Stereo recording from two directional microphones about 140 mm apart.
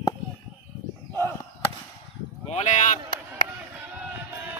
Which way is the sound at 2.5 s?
55° left (ahead or behind).